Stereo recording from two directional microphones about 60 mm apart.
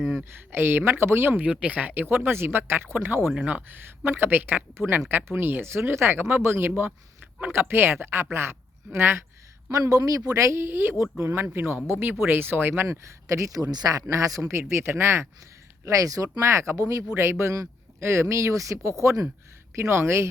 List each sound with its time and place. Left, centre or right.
0.5 s speech: right
1.3 s speech: right
3.3 s speech: right
9.6 s speech: right
10.2 s speech: right
12.9 s speech: right
14.7 s speech: right
15.8 s speech: right
16.4 s speech: right
19.7 s speech: right